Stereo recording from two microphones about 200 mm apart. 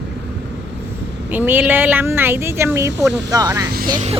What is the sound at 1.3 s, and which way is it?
Speech, 10° right (ahead or behind).